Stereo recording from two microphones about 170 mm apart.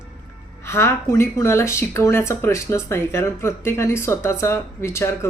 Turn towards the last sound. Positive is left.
turn(degrees=15)  # may be behind; listen again after turning